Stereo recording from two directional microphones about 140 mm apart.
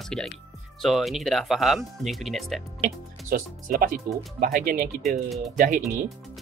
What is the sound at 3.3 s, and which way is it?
Speech, 90° right.